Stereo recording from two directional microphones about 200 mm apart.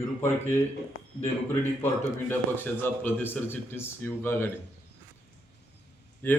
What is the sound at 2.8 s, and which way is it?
Speech, 10° left (ahead or behind).